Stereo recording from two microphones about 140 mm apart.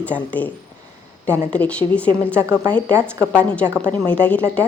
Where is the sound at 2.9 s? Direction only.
20° right (ahead or behind).